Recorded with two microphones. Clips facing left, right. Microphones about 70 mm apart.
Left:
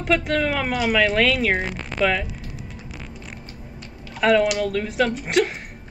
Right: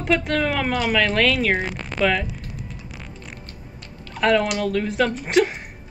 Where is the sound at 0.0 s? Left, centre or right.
Centre.